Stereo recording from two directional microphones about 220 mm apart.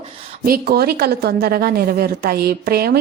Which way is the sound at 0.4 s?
45° right (ahead or behind).